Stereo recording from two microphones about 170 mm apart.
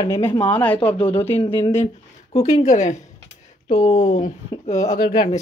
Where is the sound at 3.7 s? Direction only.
30° left (ahead or behind).